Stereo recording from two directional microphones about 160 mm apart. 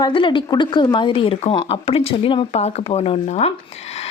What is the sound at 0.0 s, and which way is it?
A woman's voice, 30° left (ahead or behind).